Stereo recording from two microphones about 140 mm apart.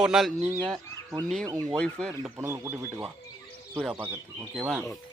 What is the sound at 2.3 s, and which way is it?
A man's voice, 15° right (ahead or behind).